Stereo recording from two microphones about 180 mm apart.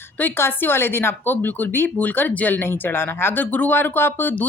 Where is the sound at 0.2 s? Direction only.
10° left (ahead or behind).